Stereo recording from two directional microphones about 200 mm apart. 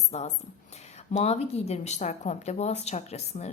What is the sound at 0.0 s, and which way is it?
A woman's voice, 35° left (ahead or behind).